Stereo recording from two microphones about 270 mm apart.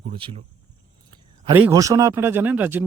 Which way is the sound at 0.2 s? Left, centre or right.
Centre.